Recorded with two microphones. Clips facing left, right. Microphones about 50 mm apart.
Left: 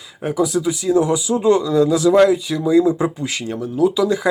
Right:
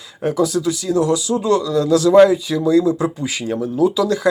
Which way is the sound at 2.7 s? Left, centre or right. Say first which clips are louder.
Left 1 dB; centre.